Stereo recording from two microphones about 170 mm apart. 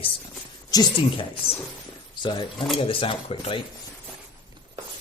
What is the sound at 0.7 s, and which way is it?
A woman's voice, 20° left (ahead or behind).